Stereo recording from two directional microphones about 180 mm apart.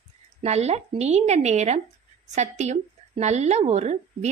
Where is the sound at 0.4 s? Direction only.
35° right (ahead or behind).